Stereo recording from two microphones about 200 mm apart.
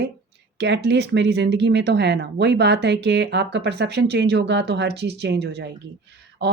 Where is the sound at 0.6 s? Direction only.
60° right (ahead or behind).